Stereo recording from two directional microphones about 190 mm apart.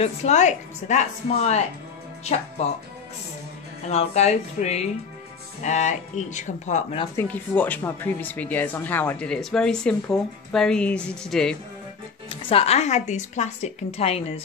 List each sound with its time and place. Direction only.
0.0 s speech: 35° left (ahead or behind)
3.9 s speech: 35° left (ahead or behind)
7.2 s speech: 10° left (ahead or behind)
12.3 s speech: 30° left (ahead or behind)